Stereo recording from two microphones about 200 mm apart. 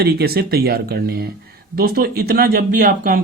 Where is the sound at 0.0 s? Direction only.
55° right (ahead or behind).